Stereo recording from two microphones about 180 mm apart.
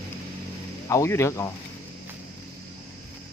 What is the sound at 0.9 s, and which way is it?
Speech, 15° left (ahead or behind).